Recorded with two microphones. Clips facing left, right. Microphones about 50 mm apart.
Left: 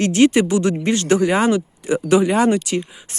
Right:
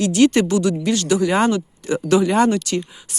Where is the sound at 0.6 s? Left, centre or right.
Left.